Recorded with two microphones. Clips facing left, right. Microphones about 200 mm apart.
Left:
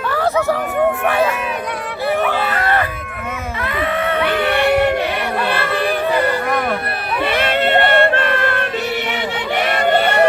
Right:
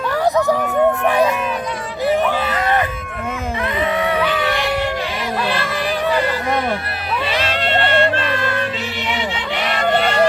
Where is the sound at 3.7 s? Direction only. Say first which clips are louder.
Even; 20° right (ahead or behind).